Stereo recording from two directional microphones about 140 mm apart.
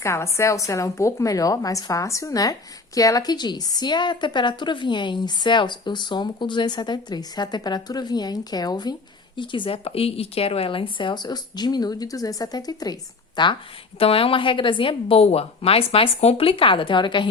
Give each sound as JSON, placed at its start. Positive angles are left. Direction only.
{"t": 0.0, "sound": "a woman's voice", "side_deg": 20}